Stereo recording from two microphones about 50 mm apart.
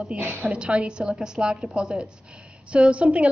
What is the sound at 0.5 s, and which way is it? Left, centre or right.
A woman's voice, right.